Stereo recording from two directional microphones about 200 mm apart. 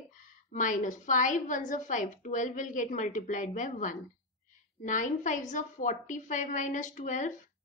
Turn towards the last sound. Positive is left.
turn(degrees=40)  # may be behind; listen again after turning